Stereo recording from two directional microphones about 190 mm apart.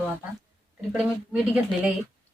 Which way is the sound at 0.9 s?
5° right (ahead or behind).